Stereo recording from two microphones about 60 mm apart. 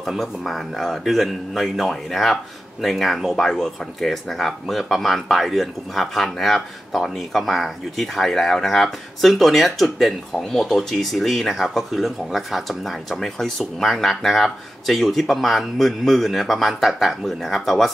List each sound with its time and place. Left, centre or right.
0.0 s speech: centre